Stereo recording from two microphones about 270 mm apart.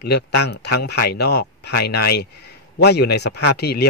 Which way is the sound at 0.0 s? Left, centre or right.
Left.